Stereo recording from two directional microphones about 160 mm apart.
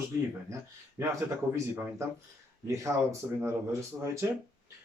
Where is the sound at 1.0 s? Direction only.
15° right (ahead or behind).